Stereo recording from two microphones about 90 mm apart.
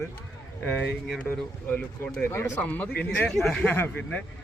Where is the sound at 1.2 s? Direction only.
20° left (ahead or behind).